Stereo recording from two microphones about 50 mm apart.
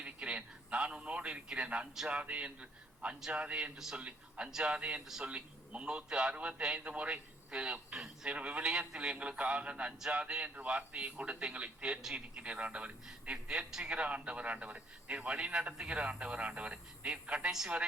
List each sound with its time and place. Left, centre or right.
0.0 s a man's voice: right
8.3 s a man's voice: right
13.8 s a man's voice: right